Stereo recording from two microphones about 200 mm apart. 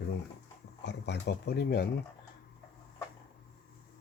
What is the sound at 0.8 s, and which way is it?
Speech, 60° left (ahead or behind).